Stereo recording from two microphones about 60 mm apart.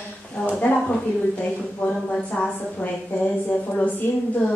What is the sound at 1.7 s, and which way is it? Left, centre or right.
Speech, centre.